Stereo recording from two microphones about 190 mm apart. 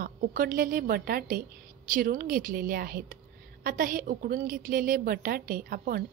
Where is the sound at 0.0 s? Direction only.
50° right (ahead or behind).